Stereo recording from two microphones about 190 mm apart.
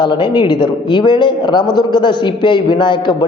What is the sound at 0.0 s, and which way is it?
A man's voice, 25° left (ahead or behind).